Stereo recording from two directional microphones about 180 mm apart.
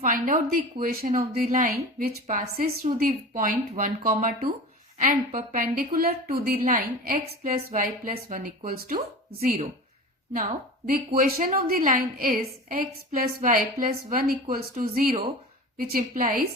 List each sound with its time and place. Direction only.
0.0 s a woman's voice: 50° right (ahead or behind)
2.2 s a woman's voice: 45° right (ahead or behind)
9.4 s a woman's voice: 45° right (ahead or behind)
10.8 s a woman's voice: 50° right (ahead or behind)